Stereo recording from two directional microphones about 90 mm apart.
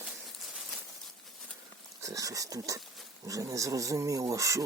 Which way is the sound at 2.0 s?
40° right (ahead or behind).